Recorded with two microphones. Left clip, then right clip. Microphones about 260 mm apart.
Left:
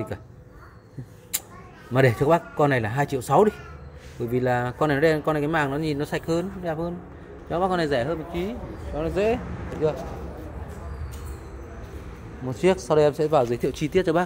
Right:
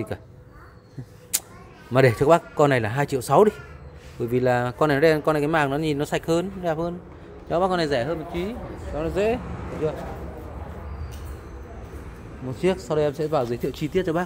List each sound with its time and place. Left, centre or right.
2.0 s a man's voice: centre
12.4 s speech: centre